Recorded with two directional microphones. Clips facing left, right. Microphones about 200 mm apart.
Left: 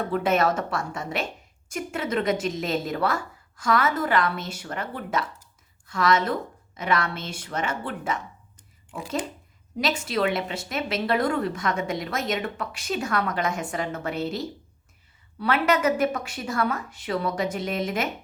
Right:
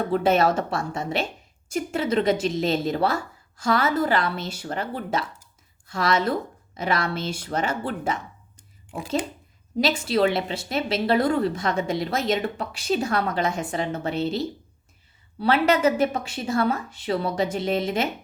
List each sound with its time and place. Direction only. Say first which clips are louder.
0.0 s a woman's voice: right 3 dB; 30° right (ahead or behind)
9.7 s a woman's voice: right 4 dB; 30° right (ahead or behind)